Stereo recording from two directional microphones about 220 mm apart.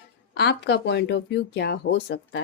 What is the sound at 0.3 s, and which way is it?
Speech, 50° left (ahead or behind).